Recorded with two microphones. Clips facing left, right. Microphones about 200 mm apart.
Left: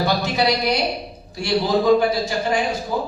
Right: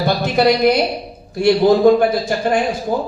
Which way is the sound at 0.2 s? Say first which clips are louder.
Right 7 dB; 55° right (ahead or behind).